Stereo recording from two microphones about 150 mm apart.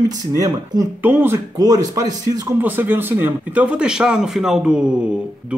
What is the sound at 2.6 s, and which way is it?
A man's voice, 10° right (ahead or behind).